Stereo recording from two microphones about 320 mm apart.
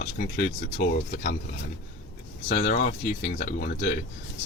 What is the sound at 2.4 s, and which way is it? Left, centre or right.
Speech, left.